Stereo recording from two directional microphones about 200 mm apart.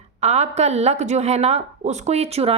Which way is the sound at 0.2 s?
35° right (ahead or behind).